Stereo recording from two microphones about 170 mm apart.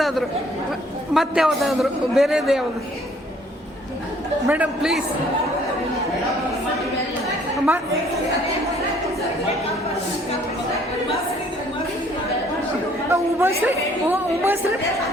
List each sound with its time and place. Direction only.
0.0 s a man's voice: centre (ahead or behind)
4.4 s a woman's voice: 10° right (ahead or behind)
7.5 s chatter: 5° right (ahead or behind)
13.1 s a woman's voice: 15° right (ahead or behind)